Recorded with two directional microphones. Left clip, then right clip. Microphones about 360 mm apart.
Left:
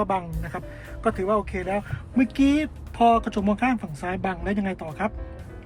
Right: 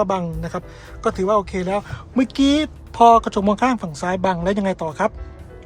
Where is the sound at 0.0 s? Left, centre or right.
Centre.